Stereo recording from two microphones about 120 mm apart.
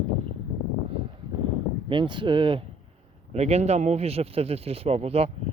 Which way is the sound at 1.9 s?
45° right (ahead or behind).